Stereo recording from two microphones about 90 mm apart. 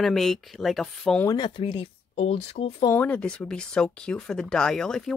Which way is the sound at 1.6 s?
90° left.